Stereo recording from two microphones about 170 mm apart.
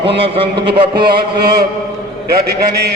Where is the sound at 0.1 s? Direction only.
35° right (ahead or behind).